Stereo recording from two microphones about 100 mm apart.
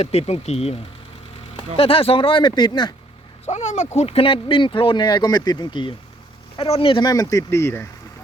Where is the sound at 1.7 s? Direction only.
70° left (ahead or behind).